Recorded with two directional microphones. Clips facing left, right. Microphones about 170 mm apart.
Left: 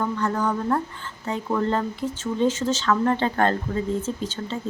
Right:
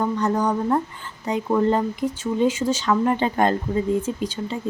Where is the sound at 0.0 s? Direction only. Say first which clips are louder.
Right 3 dB; 15° right (ahead or behind).